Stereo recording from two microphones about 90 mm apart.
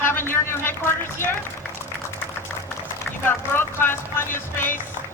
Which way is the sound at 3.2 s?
25° left (ahead or behind).